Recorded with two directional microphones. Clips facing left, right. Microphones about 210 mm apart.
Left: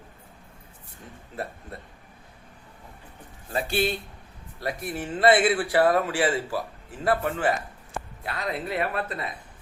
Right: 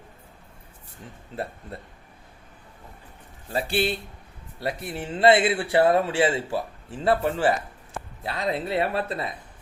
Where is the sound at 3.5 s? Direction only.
30° right (ahead or behind).